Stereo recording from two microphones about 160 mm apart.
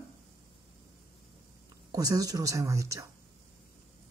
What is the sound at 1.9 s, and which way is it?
Speech, 25° right (ahead or behind).